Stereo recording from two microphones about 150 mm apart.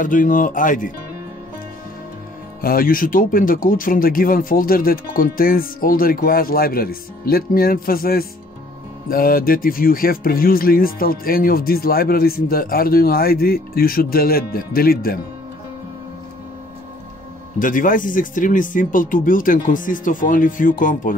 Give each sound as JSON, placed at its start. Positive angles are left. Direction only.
{"t": 0.0, "sound": "speech", "side_deg": 65}
{"t": 2.6, "sound": "speech", "side_deg": 75}
{"t": 17.6, "sound": "speech", "side_deg": 65}